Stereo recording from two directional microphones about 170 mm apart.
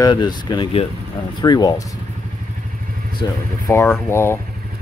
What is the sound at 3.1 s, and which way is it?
Speech, 20° left (ahead or behind).